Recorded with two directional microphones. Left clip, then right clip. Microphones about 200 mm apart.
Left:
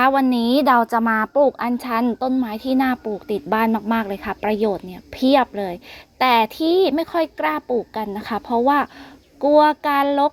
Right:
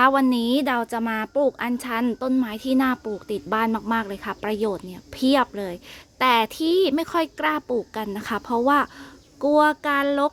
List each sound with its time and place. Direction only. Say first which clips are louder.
0.0 s a woman's voice: left 2 dB; 10° right (ahead or behind)
1.0 s a woman's voice: left 7 dB; 20° right (ahead or behind)
1.3 s a woman's voice: left 5 dB; 5° right (ahead or behind)